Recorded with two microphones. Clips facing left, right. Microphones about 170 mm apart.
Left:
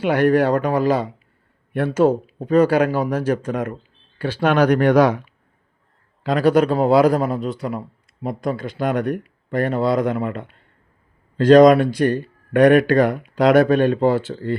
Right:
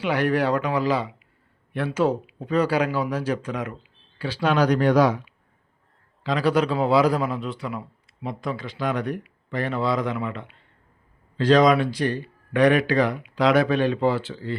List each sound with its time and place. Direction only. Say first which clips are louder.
0.0 s a man's voice: left 6 dB; 50° left (ahead or behind)
6.2 s a man's voice: left 6 dB; 50° left (ahead or behind)